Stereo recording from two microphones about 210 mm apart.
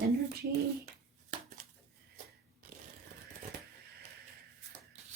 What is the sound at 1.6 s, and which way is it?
Dishes, 35° right (ahead or behind).